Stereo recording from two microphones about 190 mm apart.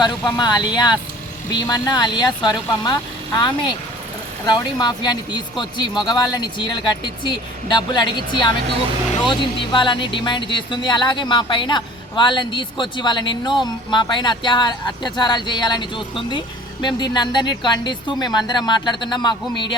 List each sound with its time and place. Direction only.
0.0 s speech: 20° left (ahead or behind)